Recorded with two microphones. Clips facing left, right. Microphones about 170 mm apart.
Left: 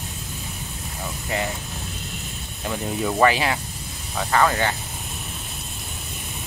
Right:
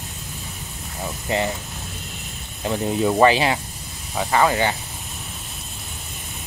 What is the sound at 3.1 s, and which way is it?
Speech, 25° right (ahead or behind).